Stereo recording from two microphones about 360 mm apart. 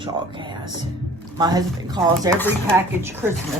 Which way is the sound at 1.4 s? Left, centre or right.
Centre.